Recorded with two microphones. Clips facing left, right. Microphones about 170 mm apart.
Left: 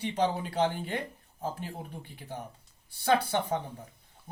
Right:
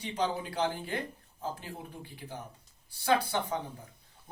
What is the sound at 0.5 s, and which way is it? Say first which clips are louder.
Speech: left 3 dB; 25° left (ahead or behind).